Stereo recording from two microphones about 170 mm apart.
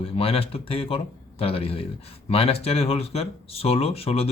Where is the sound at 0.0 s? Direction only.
35° left (ahead or behind).